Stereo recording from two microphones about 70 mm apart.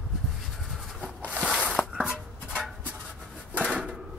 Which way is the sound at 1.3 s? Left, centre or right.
Centre.